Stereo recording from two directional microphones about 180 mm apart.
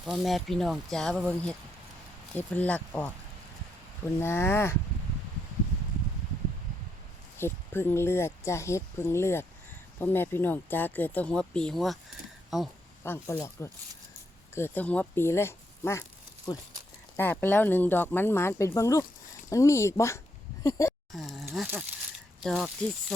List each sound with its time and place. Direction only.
0.0 s speech: centre (ahead or behind)
7.3 s speech: 15° left (ahead or behind)
13.0 s speech: 10° left (ahead or behind)
17.2 s speech: 10° left (ahead or behind)
21.1 s speech: centre (ahead or behind)